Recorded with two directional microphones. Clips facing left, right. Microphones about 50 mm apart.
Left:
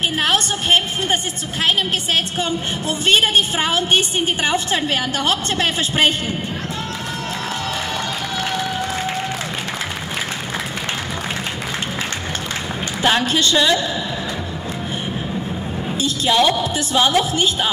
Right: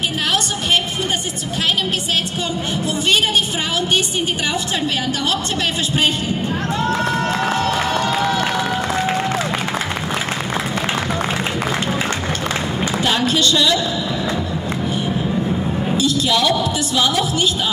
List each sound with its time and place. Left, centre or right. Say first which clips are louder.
0.2 s a woman's voice: left 2 dB; left
3.1 s a woman's voice: left 2 dB; left
13.0 s a woman's voice: left 2 dB; left
16.0 s a woman's voice: left 2 dB; left